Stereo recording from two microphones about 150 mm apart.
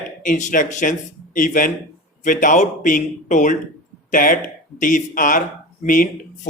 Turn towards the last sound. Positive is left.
turn(degrees=60)  # may be behind; listen again after turning